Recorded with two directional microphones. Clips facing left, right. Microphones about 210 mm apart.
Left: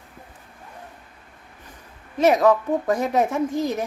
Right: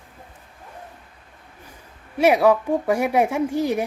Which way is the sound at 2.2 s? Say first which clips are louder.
Right 1 dB; 10° right (ahead or behind).